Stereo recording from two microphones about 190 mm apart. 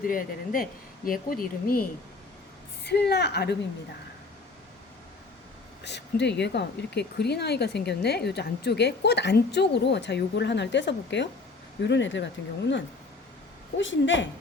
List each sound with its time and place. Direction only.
0.0 s speech: 45° left (ahead or behind)
2.8 s speech: 60° left (ahead or behind)
5.8 s a woman's voice: 65° left (ahead or behind)